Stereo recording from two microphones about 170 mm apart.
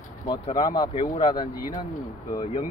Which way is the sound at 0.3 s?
25° left (ahead or behind).